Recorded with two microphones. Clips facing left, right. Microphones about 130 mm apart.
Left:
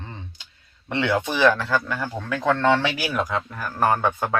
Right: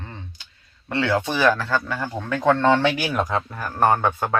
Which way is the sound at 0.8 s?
20° left (ahead or behind).